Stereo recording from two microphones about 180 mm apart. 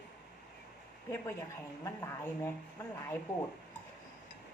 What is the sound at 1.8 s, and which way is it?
Speech, 15° left (ahead or behind).